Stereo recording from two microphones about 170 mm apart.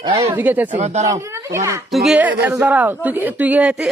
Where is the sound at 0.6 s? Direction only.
40° right (ahead or behind).